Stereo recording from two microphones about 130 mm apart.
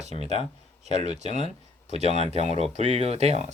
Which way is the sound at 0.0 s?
60° right (ahead or behind).